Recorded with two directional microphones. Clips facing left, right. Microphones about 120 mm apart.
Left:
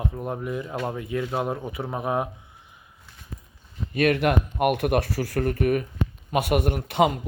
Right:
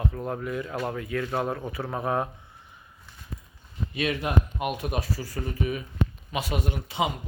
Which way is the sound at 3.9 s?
55° left (ahead or behind).